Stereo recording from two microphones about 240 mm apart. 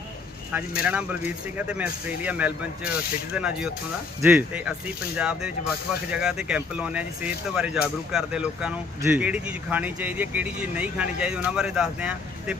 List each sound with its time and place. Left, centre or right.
0.5 s speech: centre